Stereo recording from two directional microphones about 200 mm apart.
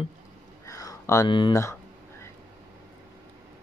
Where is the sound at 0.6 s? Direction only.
15° left (ahead or behind).